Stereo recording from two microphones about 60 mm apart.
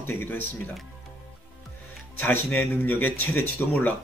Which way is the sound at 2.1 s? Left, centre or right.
Left.